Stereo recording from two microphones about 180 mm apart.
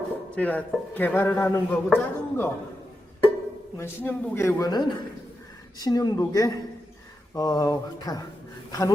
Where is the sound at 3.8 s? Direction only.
15° left (ahead or behind).